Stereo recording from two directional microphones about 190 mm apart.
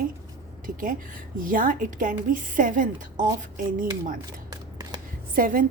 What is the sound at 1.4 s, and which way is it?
A woman's voice, 45° right (ahead or behind).